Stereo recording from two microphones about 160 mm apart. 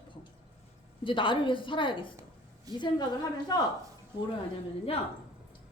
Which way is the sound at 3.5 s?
25° left (ahead or behind).